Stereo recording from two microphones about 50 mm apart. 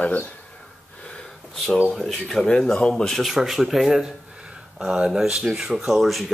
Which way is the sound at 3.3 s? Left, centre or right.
Centre.